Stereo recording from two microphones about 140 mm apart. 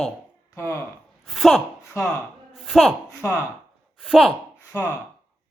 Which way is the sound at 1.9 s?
15° left (ahead or behind).